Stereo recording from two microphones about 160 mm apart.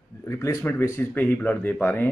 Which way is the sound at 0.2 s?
15° left (ahead or behind).